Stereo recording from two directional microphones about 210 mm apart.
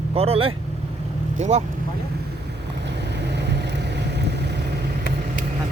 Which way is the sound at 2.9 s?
55° right (ahead or behind).